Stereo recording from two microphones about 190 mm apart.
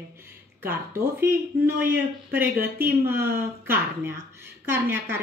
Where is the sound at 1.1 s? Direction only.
10° right (ahead or behind).